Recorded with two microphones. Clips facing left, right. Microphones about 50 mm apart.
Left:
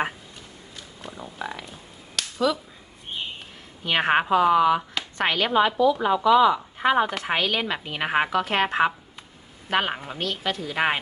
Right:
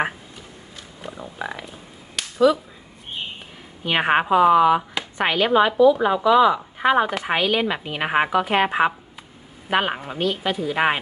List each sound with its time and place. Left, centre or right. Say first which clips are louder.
1.0 s a sound: right 3 dB; centre
2.1 s finger snapping: right 7 dB; centre
3.8 s speech: right 2 dB; centre